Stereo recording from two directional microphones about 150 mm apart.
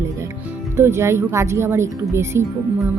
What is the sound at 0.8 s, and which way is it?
Speech, 20° right (ahead or behind).